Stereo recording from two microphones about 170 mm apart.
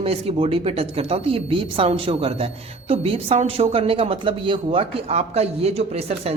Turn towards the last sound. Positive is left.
turn(degrees=-35)  # may be behind; listen again after turning